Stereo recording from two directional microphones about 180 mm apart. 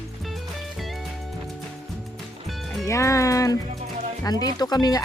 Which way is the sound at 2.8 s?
15° left (ahead or behind).